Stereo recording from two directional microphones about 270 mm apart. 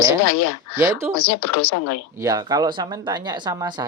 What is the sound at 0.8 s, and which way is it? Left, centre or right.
Speech, centre.